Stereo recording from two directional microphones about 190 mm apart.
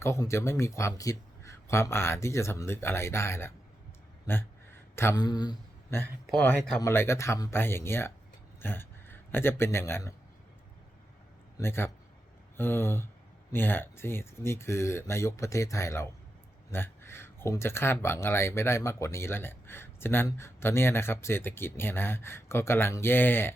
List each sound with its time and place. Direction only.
0.0 s speech: 15° left (ahead or behind)
4.9 s speech: 15° left (ahead or behind)
6.2 s speech: 5° left (ahead or behind)
11.5 s speech: 15° left (ahead or behind)